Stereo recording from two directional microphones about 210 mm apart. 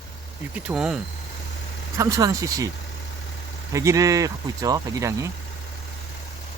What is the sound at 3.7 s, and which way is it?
Speech, 15° right (ahead or behind).